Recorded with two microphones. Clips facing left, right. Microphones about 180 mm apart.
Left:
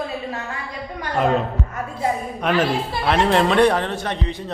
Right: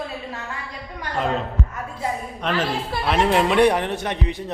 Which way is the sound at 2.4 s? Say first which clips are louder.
Left 4 dB; 15° left (ahead or behind).